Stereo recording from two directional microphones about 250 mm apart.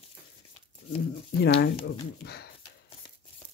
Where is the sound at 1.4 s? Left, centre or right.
Left.